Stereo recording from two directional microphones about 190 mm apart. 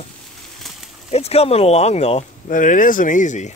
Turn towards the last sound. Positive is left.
turn(degrees=40)  # may be behind; listen again after turning